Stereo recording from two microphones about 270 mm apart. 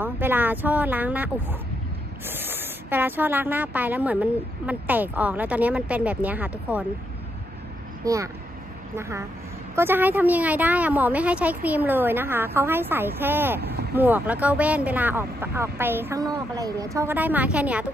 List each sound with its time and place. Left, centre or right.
0.0 s speech: centre
8.0 s speech: centre
9.8 s speech: centre
13.6 s speech: right
13.9 s speech: centre